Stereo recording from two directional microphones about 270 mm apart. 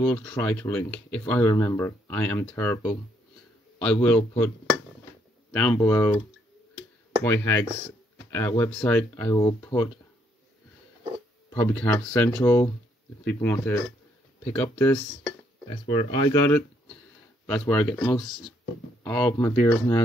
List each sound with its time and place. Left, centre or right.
0.0 s speech: centre
5.5 s speech: centre
7.2 s speech: centre
11.6 s speech: centre